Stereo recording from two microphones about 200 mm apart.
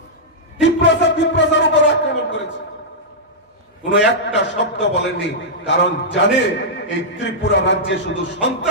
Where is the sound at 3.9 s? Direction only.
60° left (ahead or behind).